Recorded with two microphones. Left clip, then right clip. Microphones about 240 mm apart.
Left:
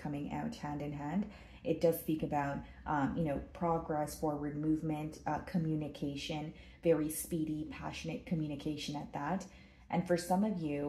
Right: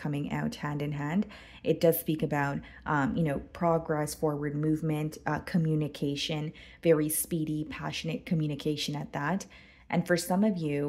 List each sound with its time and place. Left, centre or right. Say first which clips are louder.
0.0 s speech: right 6 dB; right